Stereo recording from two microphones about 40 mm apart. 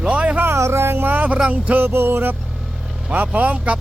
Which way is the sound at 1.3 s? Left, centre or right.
Right.